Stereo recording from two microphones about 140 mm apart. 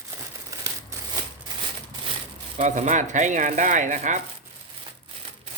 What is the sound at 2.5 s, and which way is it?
Speech, 60° right (ahead or behind).